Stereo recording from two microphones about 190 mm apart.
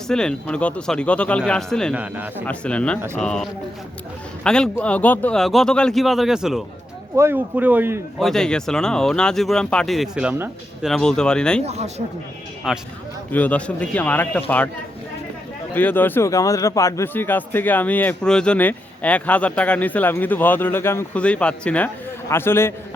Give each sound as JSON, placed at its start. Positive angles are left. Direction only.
{"t": 0.1, "sound": "speech", "side_deg": 5}
{"t": 2.0, "sound": "a man's voice", "side_deg": -10}
{"t": 2.5, "sound": "a man's voice", "side_deg": 5}
{"t": 8.2, "sound": "speech", "side_deg": 5}
{"t": 10.8, "sound": "speech", "side_deg": 5}
{"t": 11.6, "sound": "speech", "side_deg": -35}
{"t": 12.7, "sound": "a man's voice", "side_deg": 0}
{"t": 15.7, "sound": "a man's voice", "side_deg": 10}